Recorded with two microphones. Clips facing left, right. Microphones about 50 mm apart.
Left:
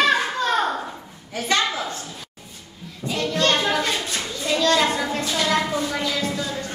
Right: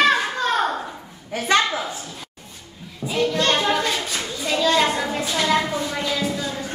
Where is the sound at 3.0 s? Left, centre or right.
Centre.